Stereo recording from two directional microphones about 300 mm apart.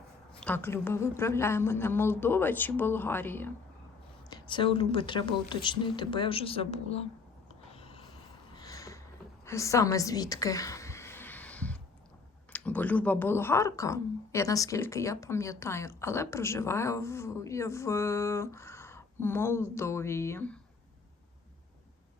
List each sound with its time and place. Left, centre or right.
0.3 s a woman's voice: centre
7.8 s a sound: centre
12.5 s a woman's voice: centre